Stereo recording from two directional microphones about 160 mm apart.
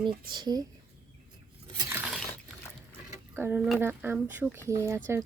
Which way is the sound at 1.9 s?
10° right (ahead or behind).